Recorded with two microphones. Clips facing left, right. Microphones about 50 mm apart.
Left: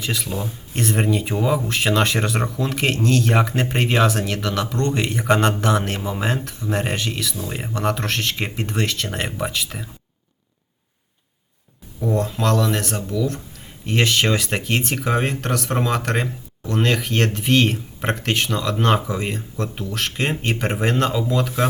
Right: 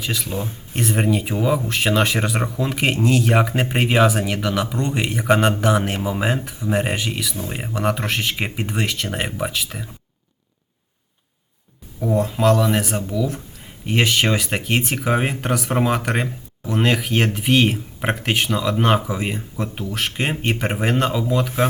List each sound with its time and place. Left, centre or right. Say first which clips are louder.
0.0 s speech: even; centre
0.3 s speech: right 1 dB; right
0.7 s speech: right 1 dB; centre
11.9 s speech: right 2 dB; centre